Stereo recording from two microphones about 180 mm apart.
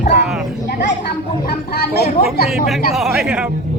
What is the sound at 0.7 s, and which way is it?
Speech, 75° left (ahead or behind).